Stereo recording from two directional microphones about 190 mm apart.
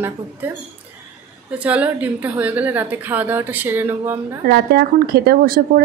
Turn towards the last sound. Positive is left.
turn(degrees=-50)  # may be behind; listen again after turning